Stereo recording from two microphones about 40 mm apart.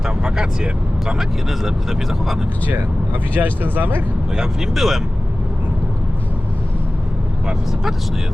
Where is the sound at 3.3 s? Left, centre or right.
Right.